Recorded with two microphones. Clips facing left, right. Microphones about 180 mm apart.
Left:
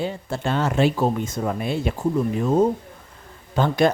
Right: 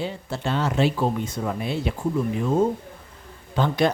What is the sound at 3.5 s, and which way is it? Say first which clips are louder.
Speech: left 3 dB; 50° left (ahead or behind).